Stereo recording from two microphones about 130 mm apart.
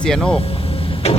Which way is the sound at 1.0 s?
55° left (ahead or behind).